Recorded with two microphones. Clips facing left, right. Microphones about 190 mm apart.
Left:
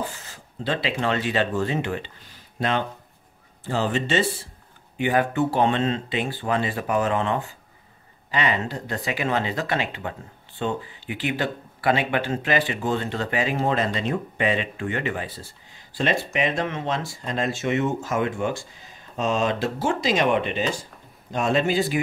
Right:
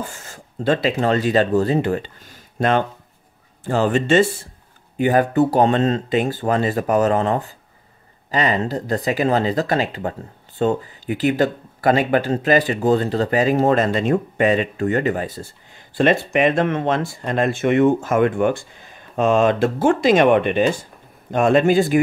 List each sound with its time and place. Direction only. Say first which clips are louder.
0.0 s a man's voice: right 1 dB; 45° right (ahead or behind)
15.9 s a man's voice: right 7 dB; 55° right (ahead or behind)